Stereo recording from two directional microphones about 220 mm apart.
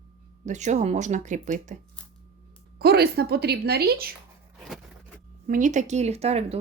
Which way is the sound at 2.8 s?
45° right (ahead or behind).